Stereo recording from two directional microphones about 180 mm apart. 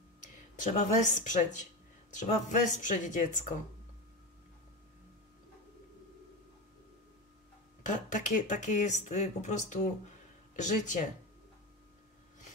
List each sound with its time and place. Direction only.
0.2 s speech: 40° left (ahead or behind)
7.8 s speech: 45° left (ahead or behind)